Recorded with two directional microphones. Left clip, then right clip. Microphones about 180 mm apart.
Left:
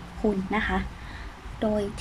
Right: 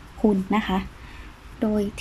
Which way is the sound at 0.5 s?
10° right (ahead or behind).